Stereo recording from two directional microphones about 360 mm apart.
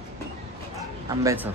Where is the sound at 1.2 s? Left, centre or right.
Centre.